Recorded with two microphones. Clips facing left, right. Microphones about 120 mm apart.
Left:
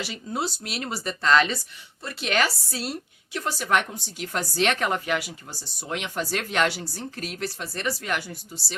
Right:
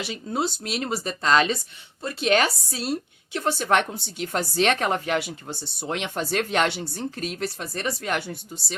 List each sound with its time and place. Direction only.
0.0 s speech: 25° right (ahead or behind)